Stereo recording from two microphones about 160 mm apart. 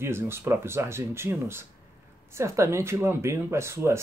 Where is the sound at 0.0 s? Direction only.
15° right (ahead or behind).